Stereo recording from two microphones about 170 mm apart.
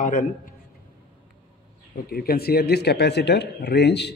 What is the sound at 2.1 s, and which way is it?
Speech, 60° left (ahead or behind).